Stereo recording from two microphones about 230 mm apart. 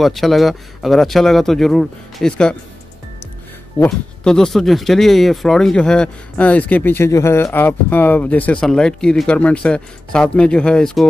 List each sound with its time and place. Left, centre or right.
0.0 s speech: centre
3.8 s speech: centre